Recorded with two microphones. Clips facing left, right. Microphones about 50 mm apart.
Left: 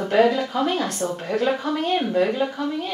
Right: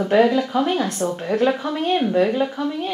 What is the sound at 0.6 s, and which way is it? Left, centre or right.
Speech, centre.